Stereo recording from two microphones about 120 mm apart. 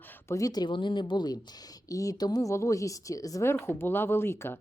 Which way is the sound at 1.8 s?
30° left (ahead or behind).